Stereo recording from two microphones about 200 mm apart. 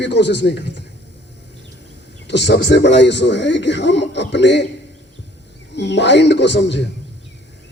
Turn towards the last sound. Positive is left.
turn(degrees=60)  # may be behind; listen again after turning